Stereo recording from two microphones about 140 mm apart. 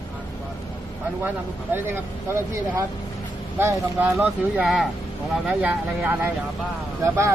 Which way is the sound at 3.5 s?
15° right (ahead or behind).